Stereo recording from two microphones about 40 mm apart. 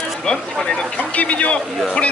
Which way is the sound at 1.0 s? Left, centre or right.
Left.